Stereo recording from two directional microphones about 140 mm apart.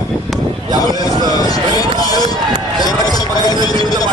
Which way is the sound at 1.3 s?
25° left (ahead or behind).